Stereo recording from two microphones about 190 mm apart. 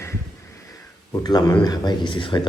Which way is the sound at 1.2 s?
20° left (ahead or behind).